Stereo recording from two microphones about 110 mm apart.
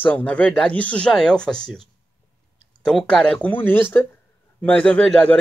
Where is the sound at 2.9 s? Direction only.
5° left (ahead or behind).